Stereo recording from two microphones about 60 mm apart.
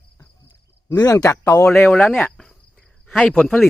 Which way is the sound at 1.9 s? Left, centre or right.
Left.